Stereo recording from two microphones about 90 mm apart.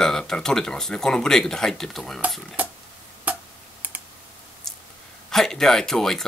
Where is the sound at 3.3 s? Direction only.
15° right (ahead or behind).